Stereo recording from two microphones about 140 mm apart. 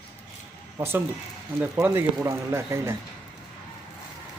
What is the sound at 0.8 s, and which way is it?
Speech, 15° right (ahead or behind).